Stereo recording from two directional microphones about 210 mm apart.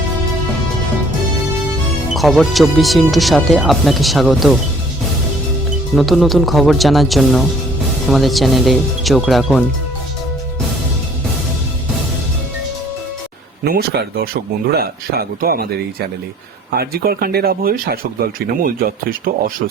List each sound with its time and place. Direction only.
2.1 s speech: centre (ahead or behind)
5.9 s speech: centre (ahead or behind)
13.7 s speech: 50° right (ahead or behind)